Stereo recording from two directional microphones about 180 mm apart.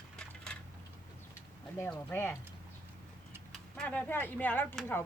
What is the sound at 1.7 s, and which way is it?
Speech, 15° left (ahead or behind).